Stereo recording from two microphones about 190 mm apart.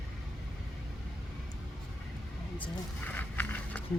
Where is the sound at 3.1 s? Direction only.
10° left (ahead or behind).